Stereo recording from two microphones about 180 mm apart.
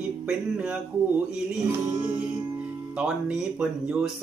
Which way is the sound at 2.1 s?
5° right (ahead or behind).